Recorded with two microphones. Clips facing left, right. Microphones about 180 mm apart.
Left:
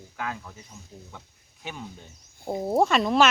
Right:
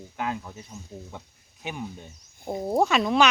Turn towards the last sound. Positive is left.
turn(degrees=0)  # may be behind; listen again after turning